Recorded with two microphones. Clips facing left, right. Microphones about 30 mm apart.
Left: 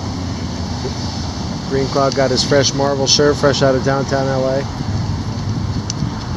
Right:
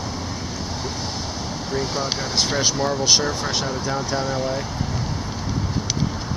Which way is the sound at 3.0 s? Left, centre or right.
Left.